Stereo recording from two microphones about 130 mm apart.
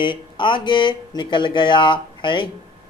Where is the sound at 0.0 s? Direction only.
40° left (ahead or behind).